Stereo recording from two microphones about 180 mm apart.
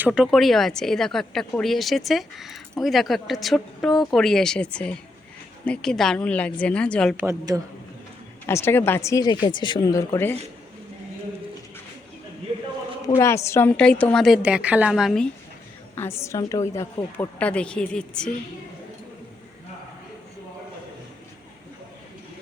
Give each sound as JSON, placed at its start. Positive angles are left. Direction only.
{"t": 0.0, "sound": "a woman's voice", "side_deg": -5}
{"t": 7.2, "sound": "a woman's voice", "side_deg": -20}
{"t": 8.4, "sound": "speech", "side_deg": 15}
{"t": 13.1, "sound": "a woman's voice", "side_deg": 15}
{"t": 16.0, "sound": "speech", "side_deg": 15}